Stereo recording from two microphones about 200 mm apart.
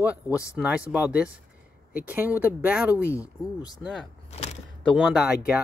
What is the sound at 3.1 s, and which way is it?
Speech, 15° left (ahead or behind).